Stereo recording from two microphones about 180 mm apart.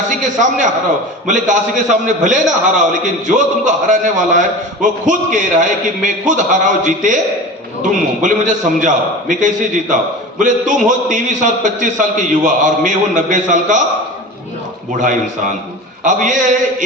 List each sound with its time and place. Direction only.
1.3 s a man's voice: 45° right (ahead or behind)
14.9 s a man's voice: 45° right (ahead or behind)